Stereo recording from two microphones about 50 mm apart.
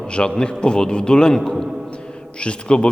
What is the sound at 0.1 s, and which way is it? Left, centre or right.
A man's voice, centre.